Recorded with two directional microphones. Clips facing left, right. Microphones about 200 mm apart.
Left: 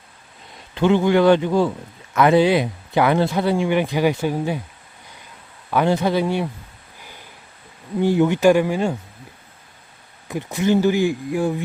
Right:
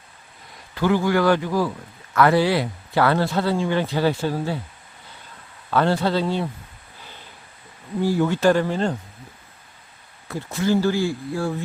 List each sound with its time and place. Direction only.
0.7 s a man's voice: 20° left (ahead or behind)
5.7 s speech: 15° left (ahead or behind)
7.0 s a sound: 10° left (ahead or behind)
8.0 s speech: 20° left (ahead or behind)
10.2 s speech: 15° left (ahead or behind)